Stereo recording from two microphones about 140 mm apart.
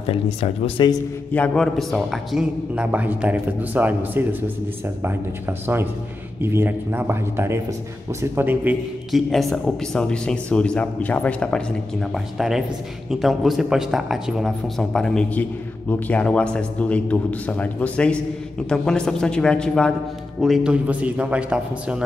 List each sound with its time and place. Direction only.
0.0 s speech: 45° left (ahead or behind)
1.3 s a man's voice: 5° left (ahead or behind); by 4.5 s 15° right (ahead or behind)
6.4 s a man's voice: 15° right (ahead or behind)
9.1 s a man's voice: centre (ahead or behind)